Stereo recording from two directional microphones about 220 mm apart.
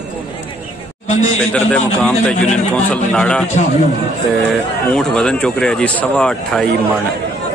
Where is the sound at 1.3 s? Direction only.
5° left (ahead or behind).